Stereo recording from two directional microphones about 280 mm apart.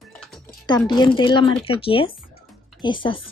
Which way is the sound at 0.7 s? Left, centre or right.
Centre.